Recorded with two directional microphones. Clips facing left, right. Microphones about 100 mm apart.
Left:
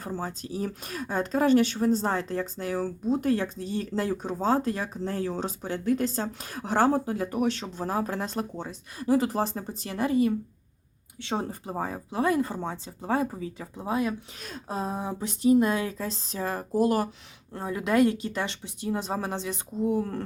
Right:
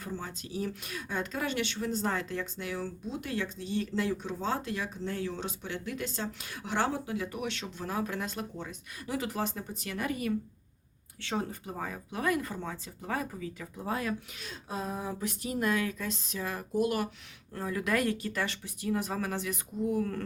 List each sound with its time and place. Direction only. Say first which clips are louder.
0.0 s speech: left 6 dB; 40° left (ahead or behind); by 11.4 s 20° left (ahead or behind)
11.6 s speech: left 6 dB; 30° left (ahead or behind)
14.3 s speech: left 5 dB; 40° left (ahead or behind)
17.5 s speech: left 5 dB; 25° left (ahead or behind)